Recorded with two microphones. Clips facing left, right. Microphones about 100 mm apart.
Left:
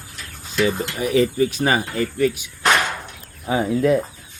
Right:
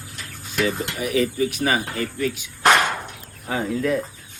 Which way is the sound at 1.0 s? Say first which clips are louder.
Left 4 dB; 30° left (ahead or behind).